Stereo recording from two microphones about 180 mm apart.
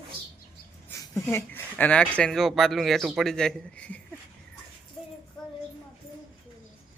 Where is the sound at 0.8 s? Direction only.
15° left (ahead or behind).